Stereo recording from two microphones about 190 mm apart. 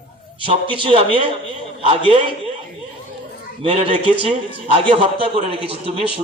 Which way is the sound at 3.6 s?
30° right (ahead or behind).